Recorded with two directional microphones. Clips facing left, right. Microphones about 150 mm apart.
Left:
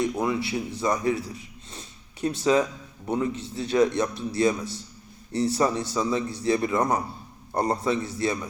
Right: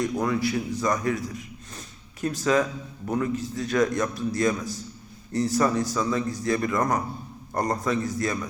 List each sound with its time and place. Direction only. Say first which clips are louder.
0.2 s a man's voice: right 1 dB; 25° left (ahead or behind)